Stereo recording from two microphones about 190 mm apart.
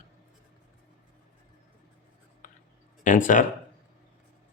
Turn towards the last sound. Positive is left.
turn(degrees=40)  # may be behind; listen again after turning